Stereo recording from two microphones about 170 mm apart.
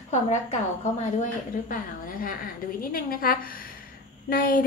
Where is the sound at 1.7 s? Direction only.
55° left (ahead or behind).